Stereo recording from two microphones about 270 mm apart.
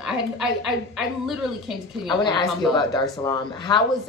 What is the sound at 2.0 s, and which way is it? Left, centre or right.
Speech, centre.